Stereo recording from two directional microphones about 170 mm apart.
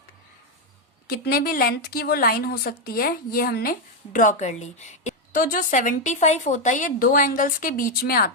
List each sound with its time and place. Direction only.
1.0 s a woman's voice: 65° left (ahead or behind)